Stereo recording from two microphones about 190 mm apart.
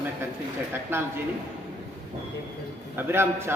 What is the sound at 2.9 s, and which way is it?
Speech, 10° right (ahead or behind).